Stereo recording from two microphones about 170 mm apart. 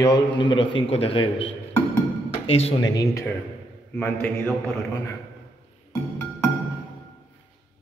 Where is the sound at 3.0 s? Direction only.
15° left (ahead or behind).